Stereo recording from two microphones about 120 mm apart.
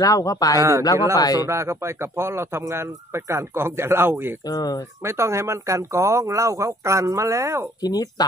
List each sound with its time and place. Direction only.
0.0 s a man's voice: 30° left (ahead or behind)
0.6 s speech: 25° right (ahead or behind)
1.1 s speech: 30° left (ahead or behind)
1.5 s speech: 25° right (ahead or behind)
4.5 s speech: 30° left (ahead or behind)
5.0 s speech: 20° right (ahead or behind)
7.8 s speech: 35° left (ahead or behind)